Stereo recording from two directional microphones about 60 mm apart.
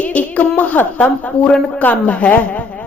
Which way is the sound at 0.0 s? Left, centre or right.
Left.